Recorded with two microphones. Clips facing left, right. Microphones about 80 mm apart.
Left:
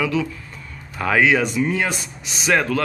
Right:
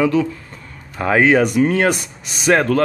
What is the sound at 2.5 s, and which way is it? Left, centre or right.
Speech, right.